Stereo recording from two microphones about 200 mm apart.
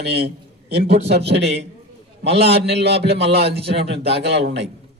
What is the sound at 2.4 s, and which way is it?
Speech, 55° right (ahead or behind).